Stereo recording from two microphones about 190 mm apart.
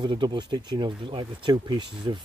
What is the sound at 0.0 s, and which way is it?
Speech, 25° right (ahead or behind).